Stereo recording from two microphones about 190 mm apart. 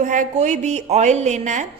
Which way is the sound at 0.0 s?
40° right (ahead or behind).